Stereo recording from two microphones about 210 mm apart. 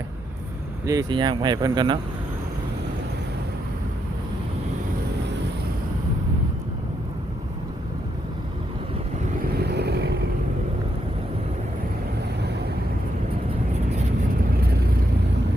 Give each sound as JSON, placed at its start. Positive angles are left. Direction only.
{"t": 0.9, "sound": "speech", "side_deg": -20}
{"t": 9.6, "sound": "vehicle", "side_deg": -50}
{"t": 14.5, "sound": "vehicle", "side_deg": -45}